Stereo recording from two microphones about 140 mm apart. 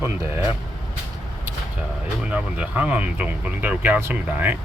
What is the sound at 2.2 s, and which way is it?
Speech, 10° right (ahead or behind).